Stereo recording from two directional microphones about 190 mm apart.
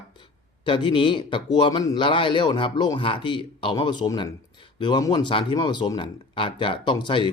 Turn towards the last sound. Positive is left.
turn(degrees=25)  # may be behind; listen again after turning